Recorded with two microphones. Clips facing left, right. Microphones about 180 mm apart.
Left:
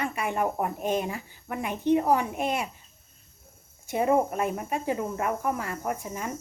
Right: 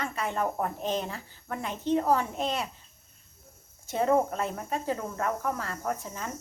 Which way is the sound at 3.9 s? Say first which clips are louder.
Left 1 dB; 15° left (ahead or behind).